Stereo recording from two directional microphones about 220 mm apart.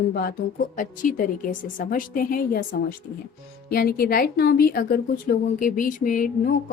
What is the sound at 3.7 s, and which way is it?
A woman's voice, 45° left (ahead or behind).